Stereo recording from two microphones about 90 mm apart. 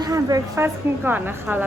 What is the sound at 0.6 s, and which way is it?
Speech, 20° right (ahead or behind).